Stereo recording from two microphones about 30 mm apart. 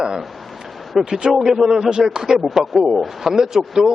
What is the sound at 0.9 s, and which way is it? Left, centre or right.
A man's voice, centre.